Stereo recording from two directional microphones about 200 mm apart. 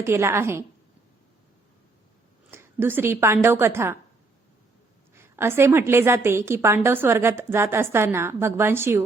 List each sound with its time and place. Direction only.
0.0 s a woman's voice: 15° right (ahead or behind)
2.5 s a woman's voice: 10° right (ahead or behind)
5.1 s a woman's voice: 10° right (ahead or behind)